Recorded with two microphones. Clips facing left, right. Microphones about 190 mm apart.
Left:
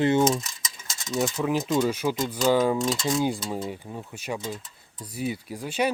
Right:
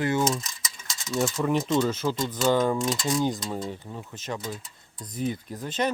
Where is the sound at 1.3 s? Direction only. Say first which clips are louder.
Right 1 dB; 5° left (ahead or behind).